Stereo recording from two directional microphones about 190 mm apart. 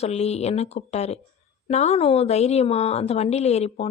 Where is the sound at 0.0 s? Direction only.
35° left (ahead or behind).